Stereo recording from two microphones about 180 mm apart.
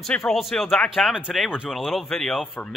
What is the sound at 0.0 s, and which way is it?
Speech, centre (ahead or behind).